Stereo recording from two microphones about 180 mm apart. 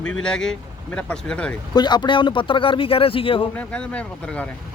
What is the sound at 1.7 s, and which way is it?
Speech, 25° left (ahead or behind).